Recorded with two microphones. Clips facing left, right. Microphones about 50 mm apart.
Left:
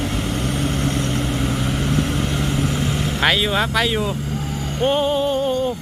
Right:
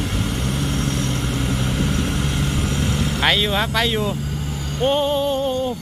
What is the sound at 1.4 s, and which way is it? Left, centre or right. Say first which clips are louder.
Vehicle: left 1 dB; centre.